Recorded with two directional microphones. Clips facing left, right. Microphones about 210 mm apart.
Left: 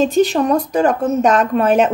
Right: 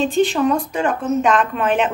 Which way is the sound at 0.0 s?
40° left (ahead or behind).